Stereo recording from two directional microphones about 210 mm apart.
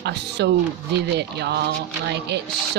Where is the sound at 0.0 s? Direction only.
55° right (ahead or behind).